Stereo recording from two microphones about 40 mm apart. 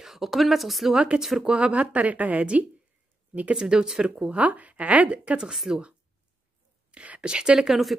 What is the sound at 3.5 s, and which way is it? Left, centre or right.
Speech, centre.